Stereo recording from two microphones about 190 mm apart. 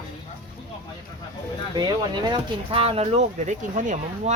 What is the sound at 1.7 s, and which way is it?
Speech, 20° right (ahead or behind).